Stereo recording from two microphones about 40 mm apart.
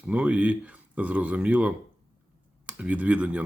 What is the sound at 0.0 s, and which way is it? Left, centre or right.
Speech, right.